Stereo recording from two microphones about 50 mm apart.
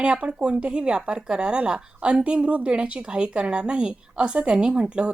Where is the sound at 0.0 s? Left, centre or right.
Centre.